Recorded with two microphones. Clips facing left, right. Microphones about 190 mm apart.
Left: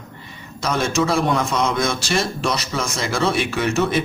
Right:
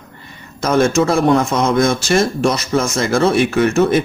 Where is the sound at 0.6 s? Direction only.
50° right (ahead or behind).